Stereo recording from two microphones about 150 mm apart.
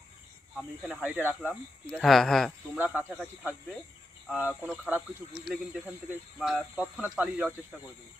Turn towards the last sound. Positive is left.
turn(degrees=-5)  # may be behind; listen again after turning